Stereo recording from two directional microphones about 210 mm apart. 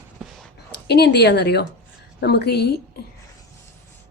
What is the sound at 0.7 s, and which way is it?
Speech, 50° left (ahead or behind).